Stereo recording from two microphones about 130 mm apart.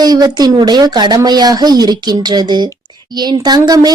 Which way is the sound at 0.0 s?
30° right (ahead or behind).